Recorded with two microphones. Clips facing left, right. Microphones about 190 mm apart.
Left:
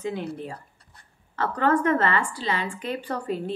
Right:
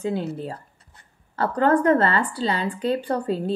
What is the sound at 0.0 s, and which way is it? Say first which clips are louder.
A woman's voice: right 4 dB; 30° right (ahead or behind).